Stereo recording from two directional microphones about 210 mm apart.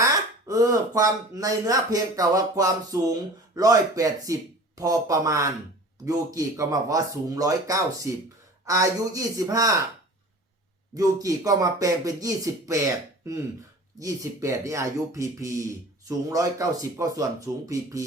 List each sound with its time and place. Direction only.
0.0 s speech: 15° right (ahead or behind)
10.9 s speech: 15° right (ahead or behind)